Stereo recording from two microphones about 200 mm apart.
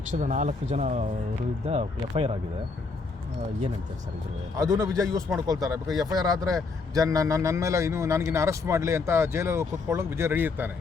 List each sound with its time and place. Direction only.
0.1 s speech: 40° right (ahead or behind)
4.5 s speech: 15° right (ahead or behind)